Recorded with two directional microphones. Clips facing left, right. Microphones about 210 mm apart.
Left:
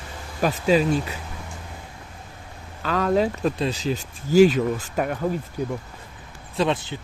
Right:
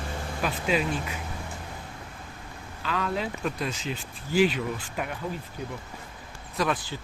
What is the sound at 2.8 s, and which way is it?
Speech, 40° left (ahead or behind).